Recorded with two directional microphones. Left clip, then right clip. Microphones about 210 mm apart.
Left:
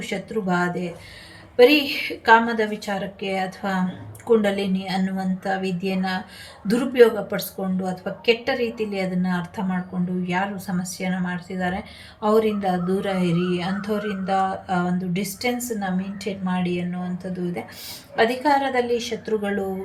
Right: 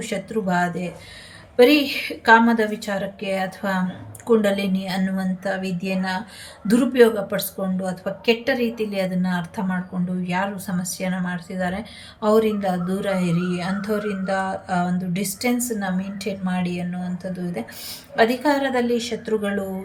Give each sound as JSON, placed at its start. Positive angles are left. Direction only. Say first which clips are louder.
{"t": 0.0, "sound": "speech", "louder": "right 1 dB", "side_deg": -10}